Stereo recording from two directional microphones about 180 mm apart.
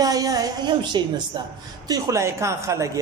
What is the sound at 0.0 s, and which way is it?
A man's voice, 20° right (ahead or behind).